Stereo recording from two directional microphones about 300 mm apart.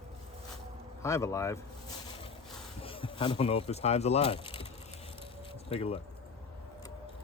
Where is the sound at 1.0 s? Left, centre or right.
Centre.